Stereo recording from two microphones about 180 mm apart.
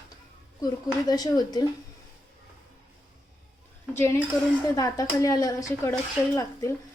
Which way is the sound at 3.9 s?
15° left (ahead or behind).